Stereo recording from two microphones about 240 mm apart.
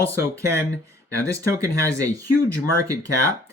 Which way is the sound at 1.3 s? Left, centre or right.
Centre.